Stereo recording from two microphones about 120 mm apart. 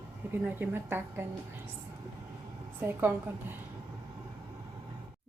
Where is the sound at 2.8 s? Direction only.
15° right (ahead or behind).